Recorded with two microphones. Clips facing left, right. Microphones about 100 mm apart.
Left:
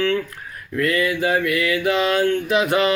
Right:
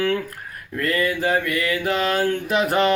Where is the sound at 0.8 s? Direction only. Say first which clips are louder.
Left 2 dB; 40° right (ahead or behind).